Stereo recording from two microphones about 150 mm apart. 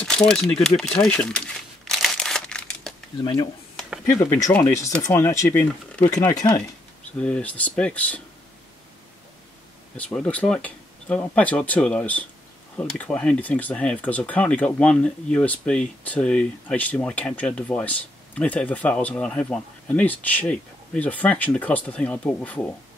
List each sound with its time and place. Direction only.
0.0 s speech: 5° left (ahead or behind)
1.9 s crumpling: 5° left (ahead or behind)
4.0 s speech: 15° left (ahead or behind)
7.2 s speech: 5° left (ahead or behind)
9.9 s speech: 10° left (ahead or behind)